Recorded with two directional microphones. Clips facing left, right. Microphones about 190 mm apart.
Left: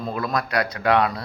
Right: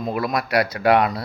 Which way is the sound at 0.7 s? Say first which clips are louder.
Right 1 dB; 30° right (ahead or behind).